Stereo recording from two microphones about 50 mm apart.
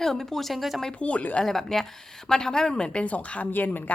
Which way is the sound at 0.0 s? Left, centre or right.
Centre.